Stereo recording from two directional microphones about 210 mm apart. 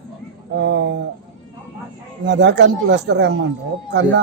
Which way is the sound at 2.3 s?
55° right (ahead or behind).